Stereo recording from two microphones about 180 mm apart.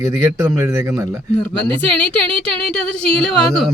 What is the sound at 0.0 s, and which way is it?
Speech, 20° right (ahead or behind).